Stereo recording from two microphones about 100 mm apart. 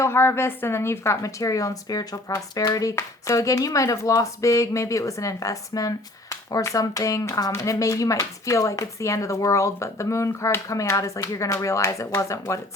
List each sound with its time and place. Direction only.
0.0 s speech: 25° left (ahead or behind)